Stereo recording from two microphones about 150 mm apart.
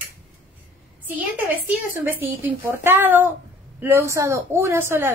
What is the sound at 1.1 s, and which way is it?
A woman's voice, 10° right (ahead or behind).